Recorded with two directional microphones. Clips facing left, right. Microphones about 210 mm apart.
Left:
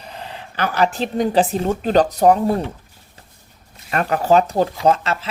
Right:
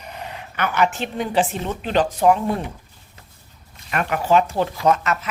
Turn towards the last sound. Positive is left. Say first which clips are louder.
# left 2 dB
turn(degrees=30)  # may be behind; listen again after turning